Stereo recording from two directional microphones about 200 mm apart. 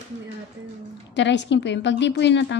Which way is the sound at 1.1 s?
60° left (ahead or behind).